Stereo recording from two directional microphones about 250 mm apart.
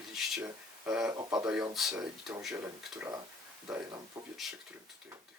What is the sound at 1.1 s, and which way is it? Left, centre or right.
Speech, centre.